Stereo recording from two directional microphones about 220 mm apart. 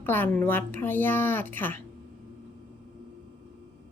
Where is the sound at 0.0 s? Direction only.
10° left (ahead or behind).